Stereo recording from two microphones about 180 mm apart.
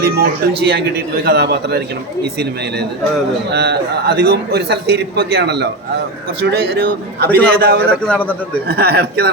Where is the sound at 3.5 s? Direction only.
65° right (ahead or behind).